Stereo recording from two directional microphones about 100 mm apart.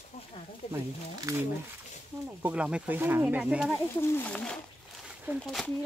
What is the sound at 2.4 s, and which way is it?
Speech, 10° right (ahead or behind).